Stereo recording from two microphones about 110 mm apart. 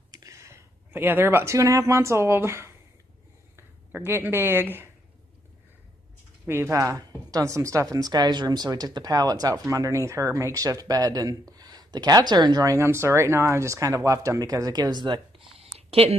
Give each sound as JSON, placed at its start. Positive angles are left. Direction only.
{"t": 0.1, "sound": "speech", "side_deg": -30}
{"t": 6.4, "sound": "speech", "side_deg": -25}
{"t": 15.9, "sound": "a woman's voice", "side_deg": -65}